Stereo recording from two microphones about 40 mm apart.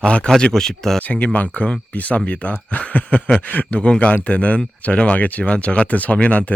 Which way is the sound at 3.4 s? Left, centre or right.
Left.